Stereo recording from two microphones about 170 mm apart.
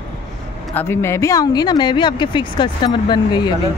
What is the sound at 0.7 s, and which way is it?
Speech, 15° left (ahead or behind).